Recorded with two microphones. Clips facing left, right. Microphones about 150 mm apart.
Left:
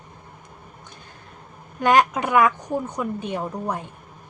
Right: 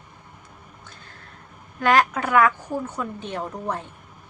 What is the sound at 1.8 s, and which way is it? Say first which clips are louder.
A woman's voice: left 2 dB; 20° left (ahead or behind).